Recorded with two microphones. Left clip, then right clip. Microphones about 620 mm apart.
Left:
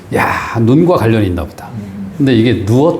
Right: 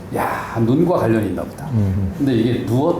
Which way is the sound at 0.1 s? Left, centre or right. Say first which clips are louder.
Left 7 dB; left.